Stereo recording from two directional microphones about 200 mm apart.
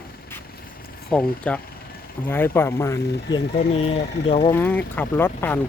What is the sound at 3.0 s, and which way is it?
Speech, 55° left (ahead or behind).